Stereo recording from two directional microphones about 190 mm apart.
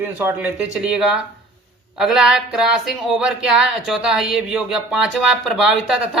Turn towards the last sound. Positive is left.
turn(degrees=-5)  # may be behind; listen again after turning